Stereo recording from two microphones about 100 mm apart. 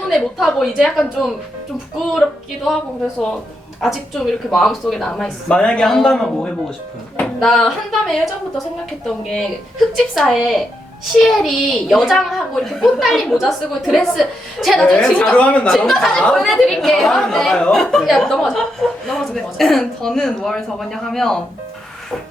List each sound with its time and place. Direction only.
0.1 s a woman's voice: centre (ahead or behind)
3.8 s a woman's voice: centre (ahead or behind)
9.9 s a woman's voice: centre (ahead or behind)